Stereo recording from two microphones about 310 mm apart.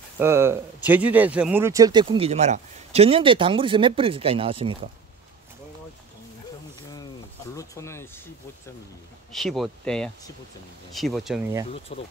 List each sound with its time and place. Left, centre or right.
0.2 s speech: centre
7.5 s speech: centre
9.3 s speech: centre
11.9 s speech: centre